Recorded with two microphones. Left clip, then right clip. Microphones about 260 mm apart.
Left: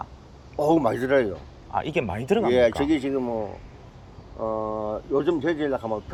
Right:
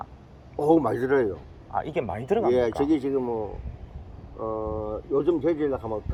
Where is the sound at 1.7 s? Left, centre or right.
Left.